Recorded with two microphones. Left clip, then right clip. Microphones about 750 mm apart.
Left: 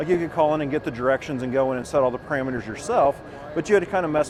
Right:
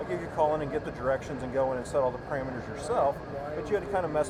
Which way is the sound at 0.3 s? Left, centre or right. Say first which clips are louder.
Left 2 dB; left.